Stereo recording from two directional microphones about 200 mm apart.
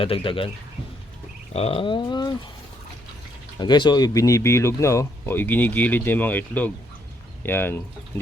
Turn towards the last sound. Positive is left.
turn(degrees=10)  # may be behind; listen again after turning